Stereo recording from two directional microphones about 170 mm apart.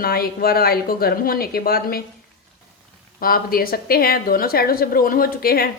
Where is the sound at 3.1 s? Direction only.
60° left (ahead or behind).